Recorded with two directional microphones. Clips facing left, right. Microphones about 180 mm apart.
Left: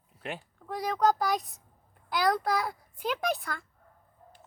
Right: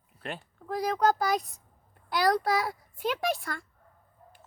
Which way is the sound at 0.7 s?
Centre (ahead or behind).